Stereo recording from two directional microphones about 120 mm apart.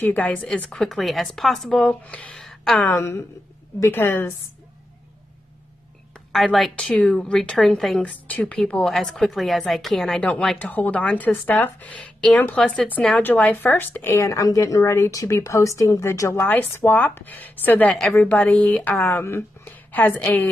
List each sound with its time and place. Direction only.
0.0 s a woman's voice: 15° left (ahead or behind)
2.9 s a woman's voice: 20° left (ahead or behind)
6.3 s a woman's voice: centre (ahead or behind)